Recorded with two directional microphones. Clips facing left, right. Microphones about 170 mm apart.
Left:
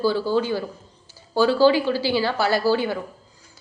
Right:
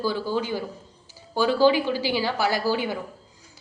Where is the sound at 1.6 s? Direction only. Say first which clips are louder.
Even; 15° right (ahead or behind).